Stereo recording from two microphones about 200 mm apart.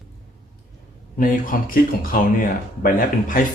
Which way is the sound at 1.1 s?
45° left (ahead or behind).